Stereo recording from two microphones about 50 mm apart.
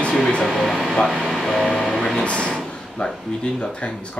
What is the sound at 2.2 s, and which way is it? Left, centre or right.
Speech, left.